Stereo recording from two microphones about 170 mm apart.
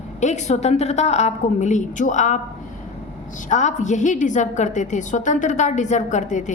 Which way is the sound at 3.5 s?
45° left (ahead or behind).